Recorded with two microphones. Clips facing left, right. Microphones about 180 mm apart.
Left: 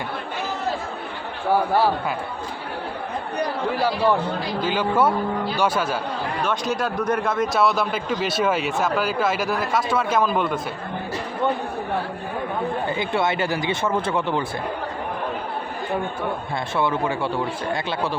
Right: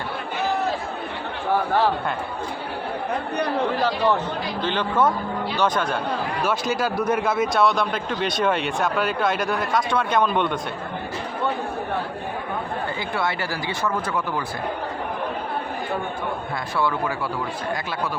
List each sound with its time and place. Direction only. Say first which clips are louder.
1.7 s a man's voice: left 1 dB; 10° left (ahead or behind)
3.8 s a man's voice: left 1 dB; 10° left (ahead or behind)
6.4 s a man's voice: even; 5° right (ahead or behind)
13.0 s speech: left 5 dB; 20° left (ahead or behind)
16.7 s speech: left 2 dB; 20° left (ahead or behind)